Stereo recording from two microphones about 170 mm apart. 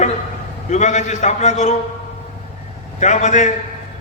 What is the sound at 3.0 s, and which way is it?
Speech, 45° left (ahead or behind).